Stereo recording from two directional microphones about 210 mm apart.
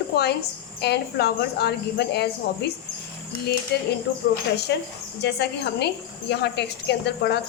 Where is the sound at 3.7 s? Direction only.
50° left (ahead or behind).